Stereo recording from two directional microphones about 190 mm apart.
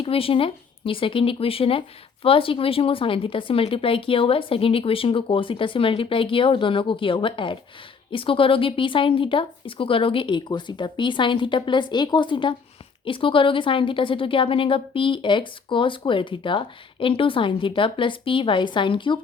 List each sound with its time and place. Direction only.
0.0 s a woman's voice: 30° left (ahead or behind)